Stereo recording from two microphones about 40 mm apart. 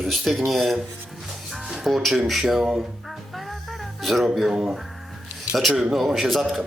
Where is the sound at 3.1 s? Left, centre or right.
Centre.